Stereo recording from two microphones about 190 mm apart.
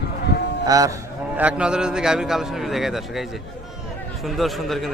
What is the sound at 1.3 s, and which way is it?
A man's voice, 5° right (ahead or behind).